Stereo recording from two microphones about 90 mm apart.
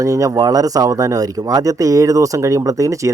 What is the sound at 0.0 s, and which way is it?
Speech, 40° right (ahead or behind).